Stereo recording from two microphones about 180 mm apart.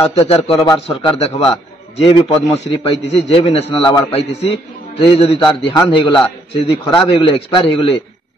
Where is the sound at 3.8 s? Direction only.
25° left (ahead or behind).